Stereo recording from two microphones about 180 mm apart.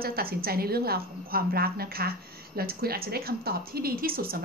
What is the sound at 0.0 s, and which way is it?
A woman's voice, 55° right (ahead or behind).